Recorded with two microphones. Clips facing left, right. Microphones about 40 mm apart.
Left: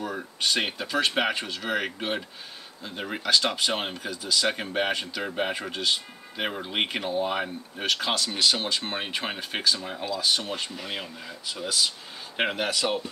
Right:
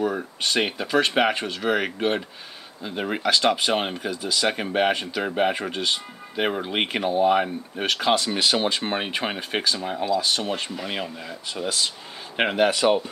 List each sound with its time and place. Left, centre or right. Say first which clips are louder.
0.0 s speech: right 5 dB; centre